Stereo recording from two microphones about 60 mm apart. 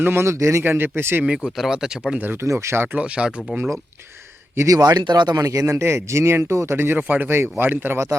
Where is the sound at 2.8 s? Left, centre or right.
Right.